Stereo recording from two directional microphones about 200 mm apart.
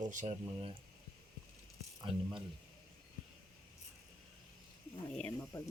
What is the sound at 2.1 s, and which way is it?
Speech, 25° right (ahead or behind).